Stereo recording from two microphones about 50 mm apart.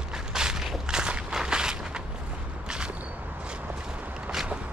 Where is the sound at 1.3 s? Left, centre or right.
Centre.